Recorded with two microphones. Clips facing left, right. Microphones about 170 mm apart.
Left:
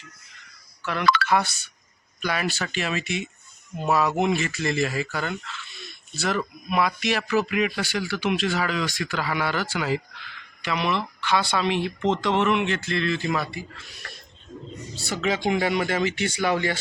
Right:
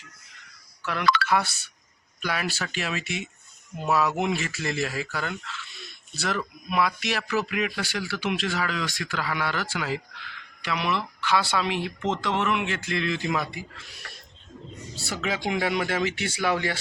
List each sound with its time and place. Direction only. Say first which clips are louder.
0.8 s speech: left 2 dB; 5° right (ahead or behind)
1.0 s speech: left 2 dB; 55° left (ahead or behind)
1.3 s a man's voice: left 2 dB; 5° right (ahead or behind)
15.0 s a man's voice: left 4 dB; 5° right (ahead or behind)